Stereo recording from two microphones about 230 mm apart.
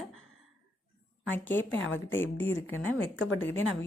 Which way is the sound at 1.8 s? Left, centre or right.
Left.